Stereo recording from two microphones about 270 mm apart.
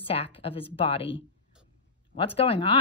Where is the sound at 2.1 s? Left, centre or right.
Left.